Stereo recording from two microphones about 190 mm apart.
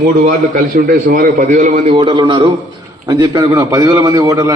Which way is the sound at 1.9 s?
25° right (ahead or behind).